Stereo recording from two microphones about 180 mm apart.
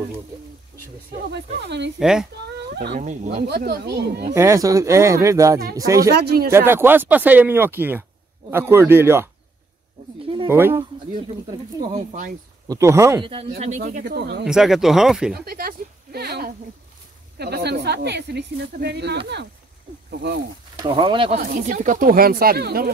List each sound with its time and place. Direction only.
2.0 s speech: 5° right (ahead or behind)
2.7 s speech: 65° right (ahead or behind)
4.3 s speech: 15° right (ahead or behind)
6.1 s speech: 60° right (ahead or behind)
6.5 s speech: 10° right (ahead or behind)
10.2 s a sound: 25° right (ahead or behind)
10.5 s speech: 15° right (ahead or behind)
12.6 s speech: 15° right (ahead or behind)
13.2 s speech: 30° right (ahead or behind)
13.6 s speech: 40° right (ahead or behind); by 14.4 s 65° right (ahead or behind)
14.4 s speech: 5° right (ahead or behind)
15.3 s speech: 60° right (ahead or behind)
20.8 s speech: 25° right (ahead or behind)
21.4 s speech: 45° right (ahead or behind)